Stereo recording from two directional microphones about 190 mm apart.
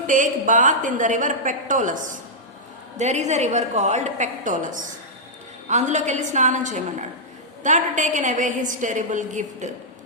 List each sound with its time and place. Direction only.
0.1 s a woman's voice: 45° right (ahead or behind)